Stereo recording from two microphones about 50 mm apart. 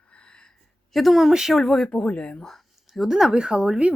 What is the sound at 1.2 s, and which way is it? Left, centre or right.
Speech, centre.